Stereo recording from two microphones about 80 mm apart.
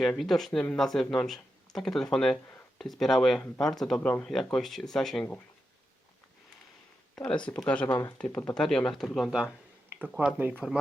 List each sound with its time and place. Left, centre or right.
0.0 s speech: centre
7.2 s speech: centre
7.9 s speech: left
8.2 s speech: left
8.5 s speech: centre
9.3 s speech: centre
10.6 s speech: centre